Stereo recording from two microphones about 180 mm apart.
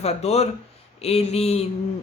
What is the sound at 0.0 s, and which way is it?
Speech, 35° left (ahead or behind).